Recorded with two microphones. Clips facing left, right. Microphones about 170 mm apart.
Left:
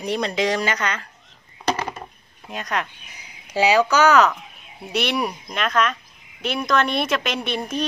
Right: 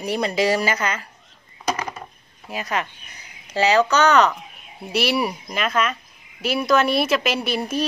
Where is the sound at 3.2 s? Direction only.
10° left (ahead or behind).